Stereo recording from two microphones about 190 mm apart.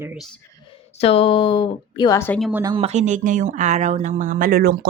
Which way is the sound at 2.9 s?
40° right (ahead or behind).